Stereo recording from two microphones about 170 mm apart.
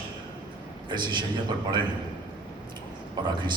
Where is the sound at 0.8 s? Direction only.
25° right (ahead or behind).